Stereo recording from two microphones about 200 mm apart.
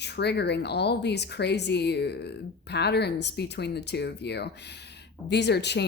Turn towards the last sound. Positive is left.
turn(degrees=55)  # may be behind; listen again after turning